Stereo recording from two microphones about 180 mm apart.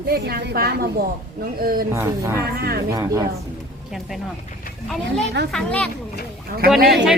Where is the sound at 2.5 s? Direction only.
60° right (ahead or behind).